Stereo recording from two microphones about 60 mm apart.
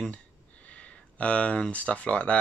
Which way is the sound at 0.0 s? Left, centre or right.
Left.